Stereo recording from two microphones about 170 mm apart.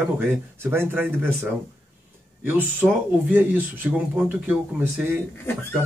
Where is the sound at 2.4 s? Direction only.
10° right (ahead or behind).